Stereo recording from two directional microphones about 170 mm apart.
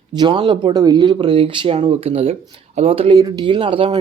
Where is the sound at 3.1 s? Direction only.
20° right (ahead or behind).